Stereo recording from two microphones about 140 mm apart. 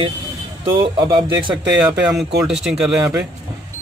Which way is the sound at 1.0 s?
35° right (ahead or behind).